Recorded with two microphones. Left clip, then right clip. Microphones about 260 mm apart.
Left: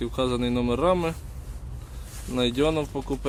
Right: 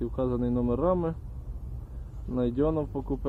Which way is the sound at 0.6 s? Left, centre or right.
Centre.